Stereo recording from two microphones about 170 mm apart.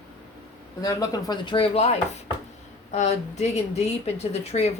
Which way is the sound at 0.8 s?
20° left (ahead or behind).